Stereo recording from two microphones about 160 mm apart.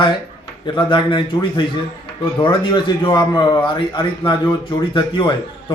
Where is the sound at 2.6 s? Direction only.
30° left (ahead or behind).